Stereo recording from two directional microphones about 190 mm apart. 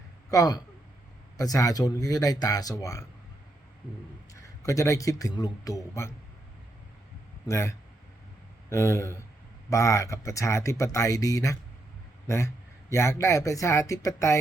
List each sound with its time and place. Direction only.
0.3 s speech: 20° left (ahead or behind)
4.4 s speech: 15° left (ahead or behind)
7.4 s speech: 15° left (ahead or behind)
12.9 s speech: 15° left (ahead or behind)